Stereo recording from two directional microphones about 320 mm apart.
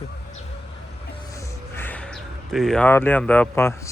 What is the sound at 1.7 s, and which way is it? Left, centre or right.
Speech, centre.